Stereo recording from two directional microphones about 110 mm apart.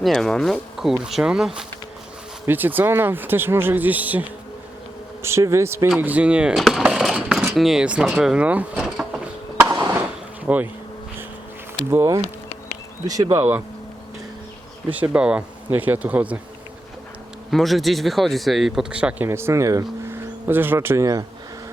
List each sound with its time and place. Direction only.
0.0 s speech: 5° left (ahead or behind)
2.5 s speech: 15° right (ahead or behind)
5.2 s speech: 25° right (ahead or behind)
6.0 s speech: 15° right (ahead or behind)
10.4 s speech: 15° right (ahead or behind)
11.9 s speech: 25° right (ahead or behind)
14.8 s speech: 15° right (ahead or behind)
17.5 s speech: centre (ahead or behind)
19.3 s speech: 25° right (ahead or behind)